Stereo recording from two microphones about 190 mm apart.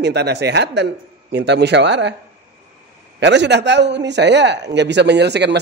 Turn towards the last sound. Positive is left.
turn(degrees=-60)  # may be behind; listen again after turning